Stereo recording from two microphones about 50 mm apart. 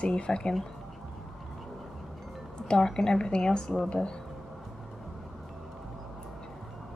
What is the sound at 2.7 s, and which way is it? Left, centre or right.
Speech, centre.